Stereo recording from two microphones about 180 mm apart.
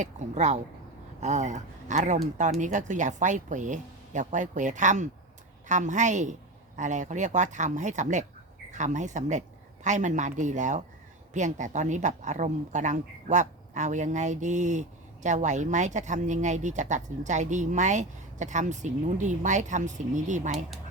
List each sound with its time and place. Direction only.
0.0 s a woman's voice: 40° right (ahead or behind)